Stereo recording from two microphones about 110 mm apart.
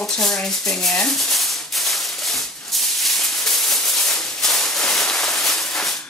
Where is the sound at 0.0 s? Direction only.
5° left (ahead or behind).